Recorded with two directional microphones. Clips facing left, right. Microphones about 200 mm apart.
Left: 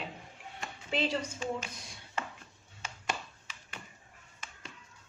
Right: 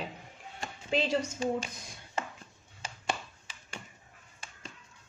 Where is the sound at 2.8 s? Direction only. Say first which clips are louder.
Right 2 dB; 30° right (ahead or behind).